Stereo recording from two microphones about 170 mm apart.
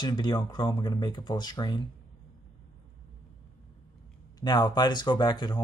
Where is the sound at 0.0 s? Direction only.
25° left (ahead or behind).